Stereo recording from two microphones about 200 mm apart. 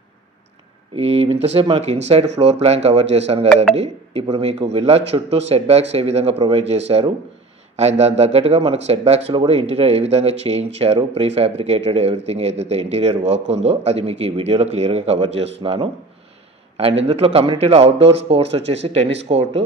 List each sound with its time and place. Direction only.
0.9 s speech: 30° right (ahead or behind)
17.1 s speech: 30° right (ahead or behind)